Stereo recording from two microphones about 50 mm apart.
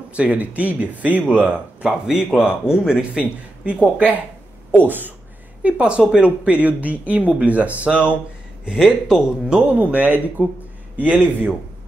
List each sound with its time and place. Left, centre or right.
0.1 s speech: right
1.8 s a man's voice: centre
4.7 s speech: right
5.6 s speech: right
8.6 s a man's voice: centre
9.7 s speech: right